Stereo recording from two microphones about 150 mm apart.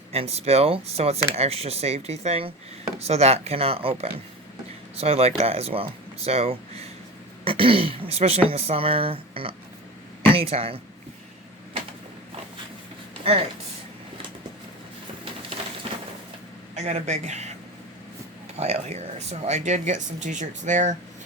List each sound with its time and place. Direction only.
0.1 s speech: 45° right (ahead or behind)
15.2 s a sound: 40° right (ahead or behind)
16.7 s speech: 50° right (ahead or behind)
18.5 s speech: 45° right (ahead or behind)